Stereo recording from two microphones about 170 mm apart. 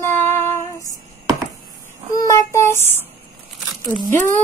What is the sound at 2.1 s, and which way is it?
Child singing, 20° left (ahead or behind).